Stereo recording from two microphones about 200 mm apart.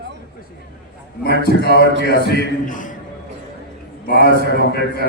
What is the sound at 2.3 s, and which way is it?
Speech, 40° left (ahead or behind).